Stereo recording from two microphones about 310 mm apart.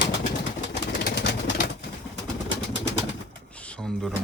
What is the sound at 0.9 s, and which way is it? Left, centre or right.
Bird, left.